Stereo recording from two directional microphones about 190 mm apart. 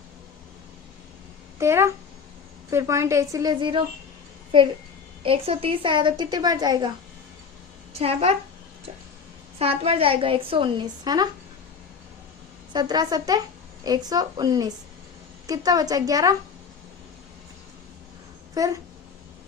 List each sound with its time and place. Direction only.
1.5 s a woman's voice: 15° right (ahead or behind)
7.9 s a woman's voice: 30° right (ahead or behind)
9.6 s a woman's voice: 30° right (ahead or behind)
12.7 s a woman's voice: 20° right (ahead or behind)
18.5 s speech: 15° right (ahead or behind)